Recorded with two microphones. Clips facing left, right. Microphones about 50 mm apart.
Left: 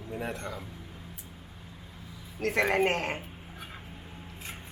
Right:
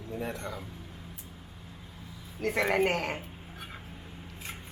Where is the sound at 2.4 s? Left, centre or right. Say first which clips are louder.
Left 1 dB; centre.